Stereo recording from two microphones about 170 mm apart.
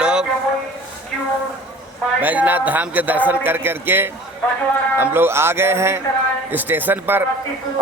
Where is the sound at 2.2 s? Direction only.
10° right (ahead or behind).